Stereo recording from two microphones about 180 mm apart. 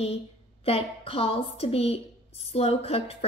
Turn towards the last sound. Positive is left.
turn(degrees=35)  # may be behind; listen again after turning